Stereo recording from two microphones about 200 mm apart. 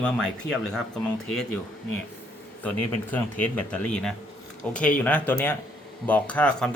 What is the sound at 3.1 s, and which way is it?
Speech, 5° left (ahead or behind).